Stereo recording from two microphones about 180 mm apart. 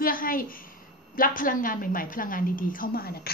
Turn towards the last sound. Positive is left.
turn(degrees=55)  # may be behind; listen again after turning